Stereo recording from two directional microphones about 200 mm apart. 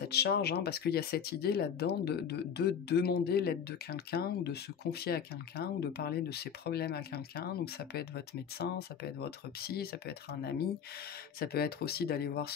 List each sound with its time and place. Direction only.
0.1 s speech: 55° left (ahead or behind)